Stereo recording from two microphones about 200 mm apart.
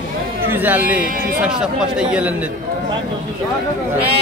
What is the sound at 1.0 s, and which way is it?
Speech, 45° right (ahead or behind).